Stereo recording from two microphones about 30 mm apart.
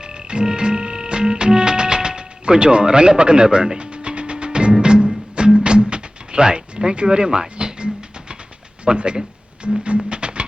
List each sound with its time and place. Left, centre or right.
0.0 s music: right
3.9 s music: right
7.2 s a sound: right
8.8 s speech: right
9.6 s music: right